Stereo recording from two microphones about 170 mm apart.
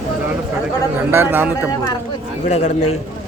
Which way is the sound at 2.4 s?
40° left (ahead or behind).